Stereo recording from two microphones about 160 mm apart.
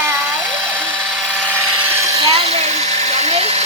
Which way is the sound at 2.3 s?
40° right (ahead or behind).